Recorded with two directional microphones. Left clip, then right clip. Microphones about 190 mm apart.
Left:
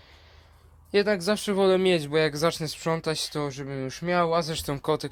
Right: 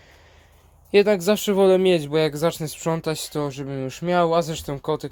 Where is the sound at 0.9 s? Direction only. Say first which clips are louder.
Right 6 dB; 35° right (ahead or behind).